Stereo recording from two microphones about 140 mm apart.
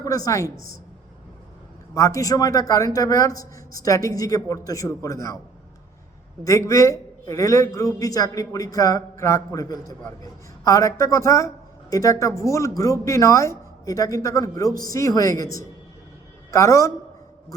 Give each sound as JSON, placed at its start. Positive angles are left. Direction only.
{"t": 0.0, "sound": "a woman's voice", "side_deg": 25}
{"t": 1.9, "sound": "speech", "side_deg": 20}
{"t": 6.4, "sound": "speech", "side_deg": 25}
{"t": 16.5, "sound": "a man's voice", "side_deg": 20}